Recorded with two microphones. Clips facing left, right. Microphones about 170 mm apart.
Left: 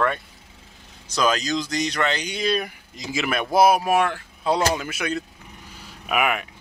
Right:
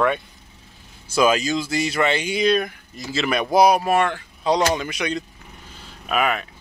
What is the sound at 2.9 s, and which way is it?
Speech, 15° left (ahead or behind).